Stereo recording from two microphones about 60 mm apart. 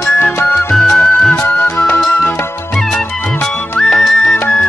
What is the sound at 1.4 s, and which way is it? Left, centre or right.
Music, left.